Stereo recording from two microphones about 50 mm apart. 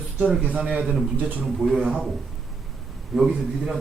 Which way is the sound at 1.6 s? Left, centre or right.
Right.